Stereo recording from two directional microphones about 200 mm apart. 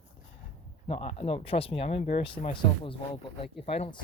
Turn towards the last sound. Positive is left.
turn(degrees=30)  # may be behind; listen again after turning